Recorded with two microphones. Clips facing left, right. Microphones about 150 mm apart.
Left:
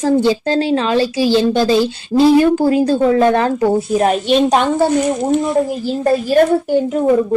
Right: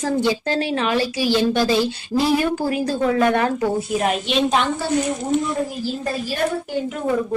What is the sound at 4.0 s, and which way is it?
Speech, 40° left (ahead or behind).